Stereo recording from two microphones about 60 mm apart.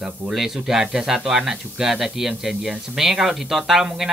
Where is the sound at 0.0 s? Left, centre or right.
Centre.